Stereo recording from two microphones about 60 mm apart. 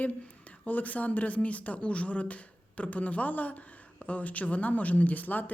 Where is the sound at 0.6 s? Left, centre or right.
Left.